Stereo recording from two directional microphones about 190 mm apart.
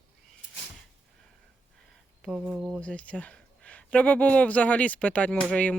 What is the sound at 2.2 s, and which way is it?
Speech, 5° right (ahead or behind).